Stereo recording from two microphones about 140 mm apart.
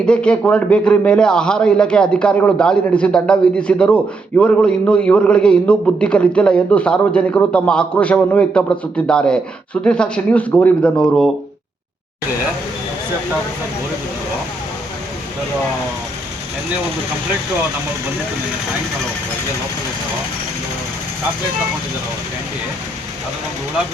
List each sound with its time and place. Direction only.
0.0 s a man's voice: 5° left (ahead or behind)